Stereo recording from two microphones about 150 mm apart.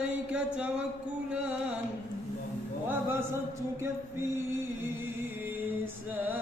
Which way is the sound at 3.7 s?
15° right (ahead or behind).